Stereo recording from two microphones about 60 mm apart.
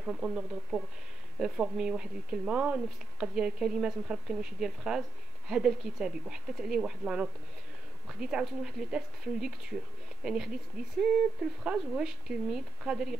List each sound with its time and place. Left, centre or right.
0.0 s speech: centre